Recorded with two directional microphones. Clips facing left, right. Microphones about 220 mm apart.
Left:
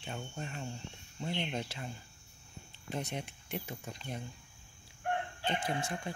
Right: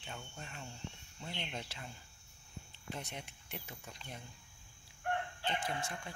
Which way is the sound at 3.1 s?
30° left (ahead or behind).